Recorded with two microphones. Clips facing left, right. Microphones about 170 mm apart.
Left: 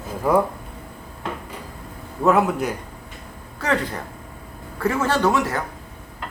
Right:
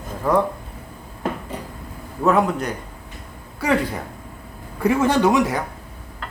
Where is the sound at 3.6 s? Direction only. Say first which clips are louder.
Right 3 dB; 10° right (ahead or behind).